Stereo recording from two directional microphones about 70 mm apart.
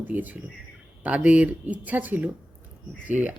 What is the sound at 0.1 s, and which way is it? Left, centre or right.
Speech, right.